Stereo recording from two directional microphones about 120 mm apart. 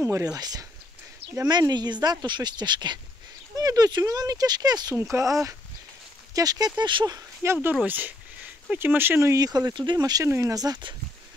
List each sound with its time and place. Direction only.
0.0 s speech: 25° right (ahead or behind)
5.1 s speech: 20° right (ahead or behind)
6.3 s speech: 30° right (ahead or behind)
7.7 s speech: 15° right (ahead or behind); by 10.2 s 35° right (ahead or behind)
10.2 s speech: 25° right (ahead or behind)